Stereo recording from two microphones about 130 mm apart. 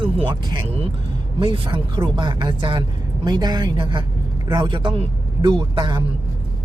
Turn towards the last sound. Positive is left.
turn(degrees=-35)  # may be behind; listen again after turning